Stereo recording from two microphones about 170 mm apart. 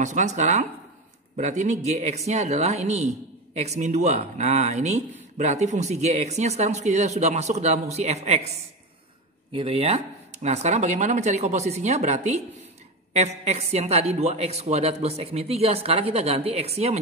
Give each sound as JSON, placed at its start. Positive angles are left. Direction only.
{"t": 0.0, "sound": "a woman's voice", "side_deg": -45}
{"t": 9.5, "sound": "a woman's voice", "side_deg": -35}